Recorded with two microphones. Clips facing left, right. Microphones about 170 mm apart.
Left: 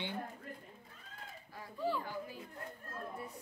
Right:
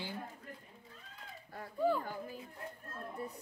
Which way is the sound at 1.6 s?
50° right (ahead or behind).